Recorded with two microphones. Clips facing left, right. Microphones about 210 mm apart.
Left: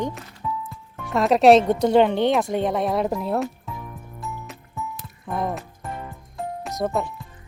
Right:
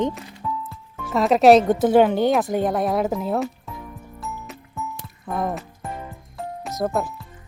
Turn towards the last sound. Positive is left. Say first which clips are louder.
# right 1 dB
turn(degrees=0)  # may be behind; listen again after turning